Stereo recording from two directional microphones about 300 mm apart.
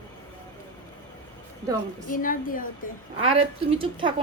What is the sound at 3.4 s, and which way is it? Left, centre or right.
Speech, centre.